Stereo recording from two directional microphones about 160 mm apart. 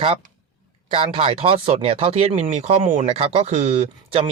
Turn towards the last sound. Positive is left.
turn(degrees=-40)  # may be behind; listen again after turning